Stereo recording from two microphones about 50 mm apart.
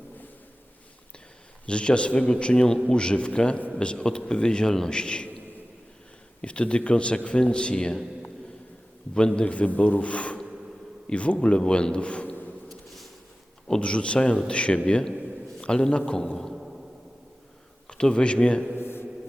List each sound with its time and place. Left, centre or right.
1.6 s a man's voice: left
6.4 s a man's voice: left
9.1 s a man's voice: centre
12.6 s a sound: centre
13.7 s a man's voice: left
16.5 s a sound: centre
17.8 s speech: centre
18.8 s mantra: left